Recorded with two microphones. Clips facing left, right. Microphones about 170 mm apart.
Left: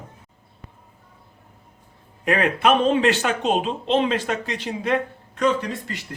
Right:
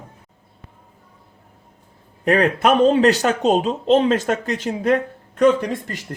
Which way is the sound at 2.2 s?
40° right (ahead or behind).